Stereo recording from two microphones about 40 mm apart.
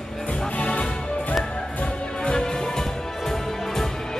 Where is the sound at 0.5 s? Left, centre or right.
Left.